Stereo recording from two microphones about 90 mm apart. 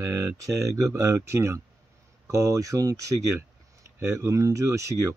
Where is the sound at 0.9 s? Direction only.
35° right (ahead or behind).